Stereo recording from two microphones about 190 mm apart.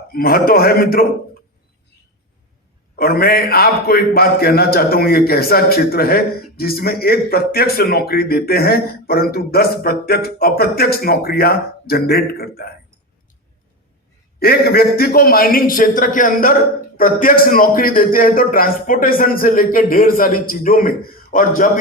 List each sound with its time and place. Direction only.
0.1 s a man's voice: 50° left (ahead or behind)
2.9 s a man's voice: 55° left (ahead or behind)
14.3 s a man's voice: 55° left (ahead or behind)